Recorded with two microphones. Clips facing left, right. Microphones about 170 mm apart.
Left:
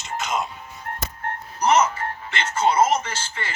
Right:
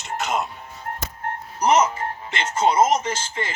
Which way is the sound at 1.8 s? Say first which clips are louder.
Right 1 dB; 20° right (ahead or behind).